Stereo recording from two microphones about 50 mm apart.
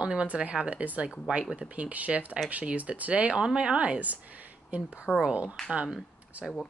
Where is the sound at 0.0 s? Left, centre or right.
Right.